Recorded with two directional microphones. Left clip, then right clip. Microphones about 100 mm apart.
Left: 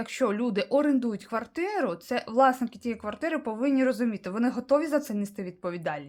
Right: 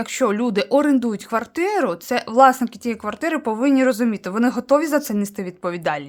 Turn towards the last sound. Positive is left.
turn(degrees=-35)  # may be behind; listen again after turning